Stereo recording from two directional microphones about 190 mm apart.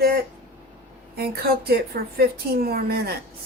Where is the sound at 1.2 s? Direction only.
55° right (ahead or behind).